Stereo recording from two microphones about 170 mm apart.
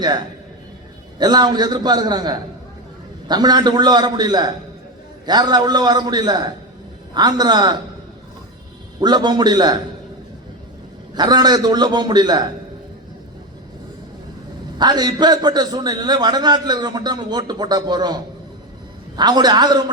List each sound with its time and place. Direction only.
1.2 s a man's voice: 25° right (ahead or behind)
9.0 s a man's voice: 25° right (ahead or behind)
11.1 s a man's voice: 25° right (ahead or behind)
14.8 s a man's voice: 25° right (ahead or behind)